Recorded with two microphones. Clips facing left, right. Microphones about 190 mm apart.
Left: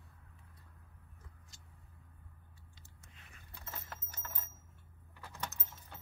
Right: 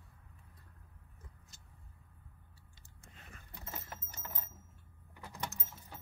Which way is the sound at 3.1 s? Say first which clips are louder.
Right 7 dB; 45° right (ahead or behind).